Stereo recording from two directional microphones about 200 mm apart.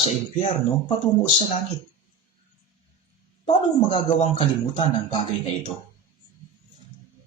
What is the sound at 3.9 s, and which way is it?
Speech, 30° left (ahead or behind).